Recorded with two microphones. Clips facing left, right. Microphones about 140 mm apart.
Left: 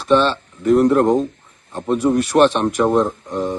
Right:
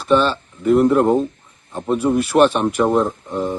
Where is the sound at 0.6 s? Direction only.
Centre (ahead or behind).